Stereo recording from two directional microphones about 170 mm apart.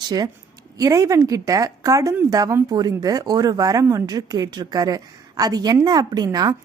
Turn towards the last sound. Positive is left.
turn(degrees=-20)  # may be behind; listen again after turning